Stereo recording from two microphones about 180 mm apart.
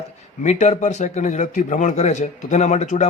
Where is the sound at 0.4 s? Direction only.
40° left (ahead or behind).